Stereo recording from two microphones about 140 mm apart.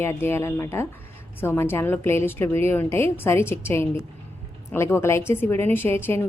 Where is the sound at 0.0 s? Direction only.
15° left (ahead or behind).